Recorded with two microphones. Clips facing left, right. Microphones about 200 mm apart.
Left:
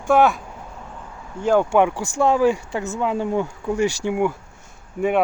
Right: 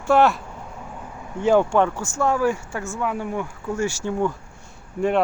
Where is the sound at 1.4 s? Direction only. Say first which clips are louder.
Left 1 dB; 10° left (ahead or behind).